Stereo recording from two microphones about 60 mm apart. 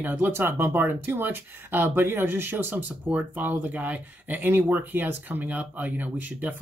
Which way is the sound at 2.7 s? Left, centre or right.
Right.